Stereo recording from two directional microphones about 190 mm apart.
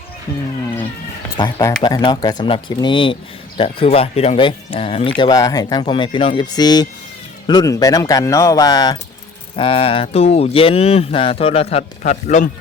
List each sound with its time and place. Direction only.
1.4 s speech: 20° left (ahead or behind); by 12.5 s 40° left (ahead or behind)